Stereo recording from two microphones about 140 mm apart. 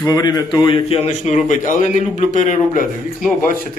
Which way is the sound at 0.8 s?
50° left (ahead or behind).